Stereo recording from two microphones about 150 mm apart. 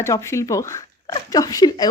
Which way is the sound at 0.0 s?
20° left (ahead or behind).